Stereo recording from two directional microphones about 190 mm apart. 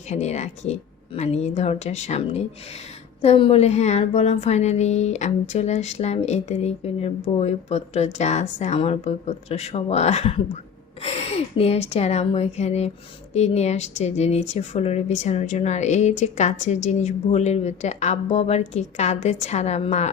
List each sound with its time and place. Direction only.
0.1 s speech: 35° left (ahead or behind)